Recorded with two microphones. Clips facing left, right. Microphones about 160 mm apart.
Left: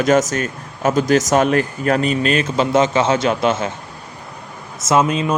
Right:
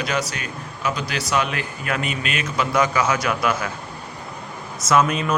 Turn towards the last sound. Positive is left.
turn(degrees=25)  # may be behind; listen again after turning